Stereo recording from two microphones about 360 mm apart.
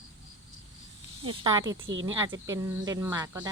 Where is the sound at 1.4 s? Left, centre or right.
Centre.